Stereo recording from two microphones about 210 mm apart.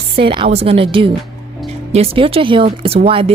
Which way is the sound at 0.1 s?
25° right (ahead or behind).